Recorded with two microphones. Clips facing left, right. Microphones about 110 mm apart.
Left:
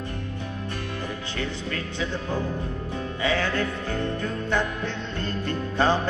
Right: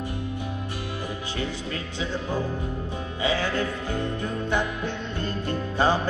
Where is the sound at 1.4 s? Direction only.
15° right (ahead or behind).